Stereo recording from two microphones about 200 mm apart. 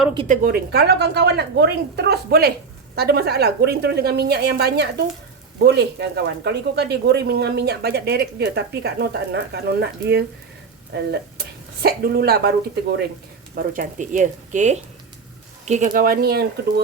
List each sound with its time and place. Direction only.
0.3 s speech: 50° right (ahead or behind)
13.6 s speech: 40° right (ahead or behind)